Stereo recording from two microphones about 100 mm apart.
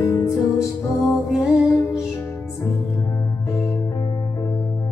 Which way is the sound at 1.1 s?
5° right (ahead or behind).